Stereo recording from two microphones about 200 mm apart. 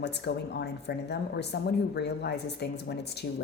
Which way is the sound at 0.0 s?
55° left (ahead or behind).